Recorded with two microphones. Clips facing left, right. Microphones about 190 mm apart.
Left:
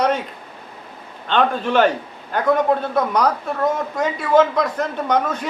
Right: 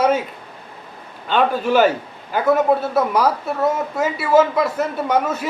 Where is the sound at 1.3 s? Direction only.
5° right (ahead or behind).